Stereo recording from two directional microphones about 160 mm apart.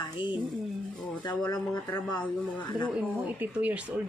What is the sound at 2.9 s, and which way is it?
Speech, 10° right (ahead or behind).